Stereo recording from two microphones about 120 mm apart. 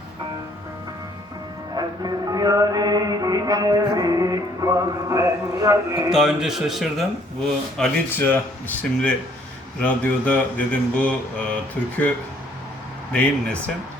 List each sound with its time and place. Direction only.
1.7 s music: 35° right (ahead or behind)
6.1 s a man's voice: 5° right (ahead or behind)
8.1 s mantra: 15° left (ahead or behind)
13.1 s mantra: 10° left (ahead or behind)